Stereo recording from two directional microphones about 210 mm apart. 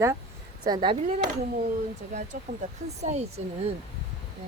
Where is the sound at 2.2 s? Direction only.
35° right (ahead or behind).